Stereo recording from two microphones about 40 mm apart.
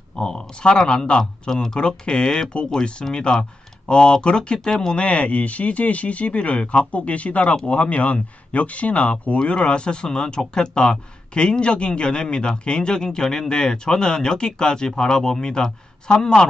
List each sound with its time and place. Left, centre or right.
0.1 s speech: centre
1.5 s speech: centre
1.8 s speech: left
4.9 s speech: left; by 16.4 s centre